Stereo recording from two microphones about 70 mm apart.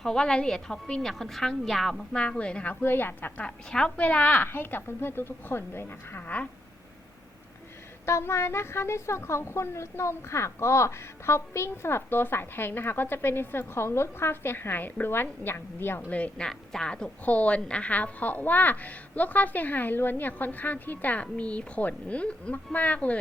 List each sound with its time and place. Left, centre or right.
0.0 s a woman's voice: centre
2.1 s a woman's voice: centre
2.8 s a woman's voice: left
3.7 s a woman's voice: centre
4.4 s a woman's voice: left
6.2 s a woman's voice: left
8.0 s a woman's voice: left
16.0 s a woman's voice: centre
16.5 s a woman's voice: centre